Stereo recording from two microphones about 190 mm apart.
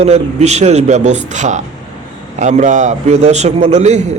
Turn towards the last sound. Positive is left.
turn(degrees=-35)  # may be behind; listen again after turning